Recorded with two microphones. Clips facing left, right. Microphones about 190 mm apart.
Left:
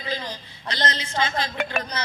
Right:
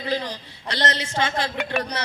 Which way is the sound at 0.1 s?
70° right (ahead or behind).